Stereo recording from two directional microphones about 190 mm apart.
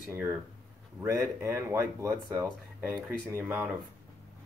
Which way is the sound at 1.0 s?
15° right (ahead or behind).